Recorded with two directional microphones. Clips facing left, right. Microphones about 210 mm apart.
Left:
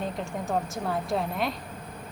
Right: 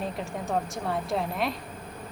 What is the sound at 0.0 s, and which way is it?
Speech, centre (ahead or behind).